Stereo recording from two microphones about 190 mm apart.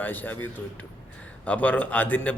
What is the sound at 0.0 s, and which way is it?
A man's voice, 10° left (ahead or behind).